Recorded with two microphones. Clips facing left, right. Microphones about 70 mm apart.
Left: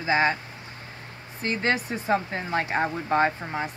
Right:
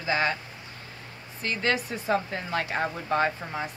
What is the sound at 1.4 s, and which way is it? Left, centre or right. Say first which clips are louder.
Speech: left 2 dB; left.